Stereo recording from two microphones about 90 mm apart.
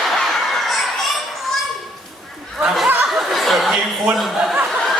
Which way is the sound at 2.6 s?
10° right (ahead or behind).